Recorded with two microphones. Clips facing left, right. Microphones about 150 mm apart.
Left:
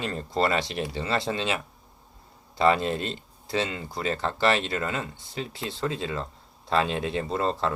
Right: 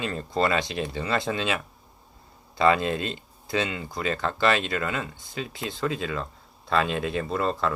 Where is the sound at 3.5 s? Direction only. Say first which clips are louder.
Right 1 dB; 35° left (ahead or behind).